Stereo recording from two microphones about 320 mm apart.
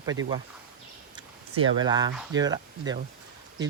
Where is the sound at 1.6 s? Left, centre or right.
Centre.